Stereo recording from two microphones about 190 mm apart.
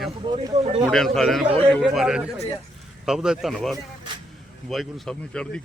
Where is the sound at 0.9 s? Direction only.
Centre (ahead or behind).